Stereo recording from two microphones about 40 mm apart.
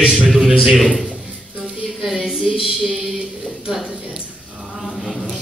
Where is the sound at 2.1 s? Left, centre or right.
Centre.